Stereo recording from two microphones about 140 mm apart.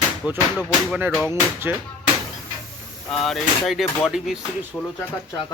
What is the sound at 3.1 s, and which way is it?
Speech, centre (ahead or behind).